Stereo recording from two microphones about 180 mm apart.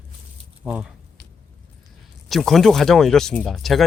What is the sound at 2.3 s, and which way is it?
Speech, centre (ahead or behind).